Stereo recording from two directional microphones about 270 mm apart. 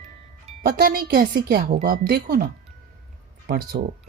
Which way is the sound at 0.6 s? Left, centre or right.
Right.